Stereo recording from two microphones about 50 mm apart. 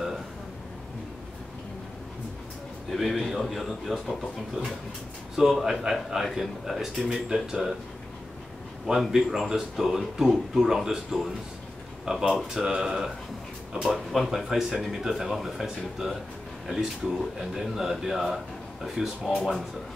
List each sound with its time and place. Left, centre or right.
2.9 s speech: centre
5.3 s speech: centre
8.8 s speech: centre
14.1 s speech: centre